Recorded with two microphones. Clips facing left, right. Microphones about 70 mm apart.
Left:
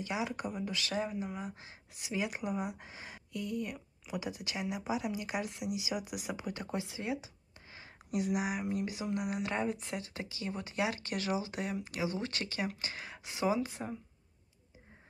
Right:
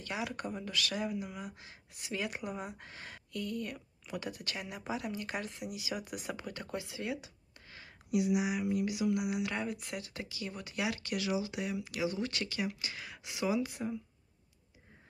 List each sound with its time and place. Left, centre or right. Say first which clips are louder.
0.0 s speech: left 2 dB; centre
0.4 s speech: left 2 dB; centre
0.7 s speech: right 1 dB; left
8.1 s speech: right 2 dB; left